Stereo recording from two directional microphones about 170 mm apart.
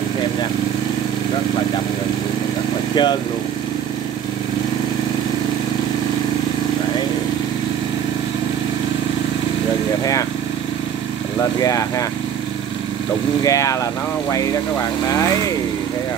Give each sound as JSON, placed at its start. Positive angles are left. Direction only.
{"t": 2.9, "sound": "speech", "side_deg": 25}
{"t": 11.6, "sound": "speech", "side_deg": 20}
{"t": 13.4, "sound": "speech", "side_deg": 20}